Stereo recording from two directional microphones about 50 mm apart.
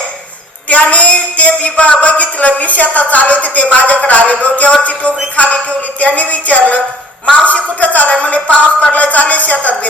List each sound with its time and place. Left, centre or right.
0.7 s a woman's voice: left